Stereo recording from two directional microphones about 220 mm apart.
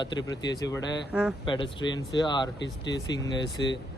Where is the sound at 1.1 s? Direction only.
5° right (ahead or behind).